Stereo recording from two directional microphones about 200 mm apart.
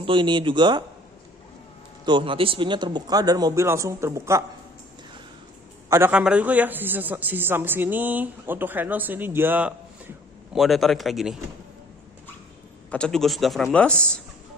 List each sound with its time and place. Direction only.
0.0 s speech: 25° right (ahead or behind)
2.0 s speech: 25° right (ahead or behind)
5.9 s a man's voice: 10° right (ahead or behind)
12.9 s speech: 5° left (ahead or behind)